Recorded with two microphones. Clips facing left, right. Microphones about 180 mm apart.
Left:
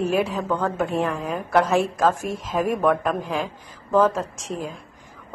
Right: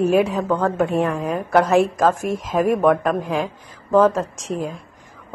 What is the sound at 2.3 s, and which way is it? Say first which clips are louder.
Speech: right 5 dB; 40° right (ahead or behind).